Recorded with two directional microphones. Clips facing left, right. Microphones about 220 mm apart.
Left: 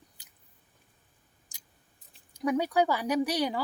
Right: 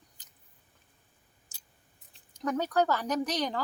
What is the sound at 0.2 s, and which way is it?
Biting, 10° left (ahead or behind).